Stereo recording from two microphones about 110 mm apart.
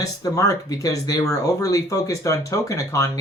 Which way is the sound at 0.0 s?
30° left (ahead or behind).